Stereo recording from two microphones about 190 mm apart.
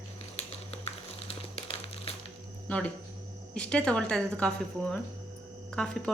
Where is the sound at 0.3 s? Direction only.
30° left (ahead or behind).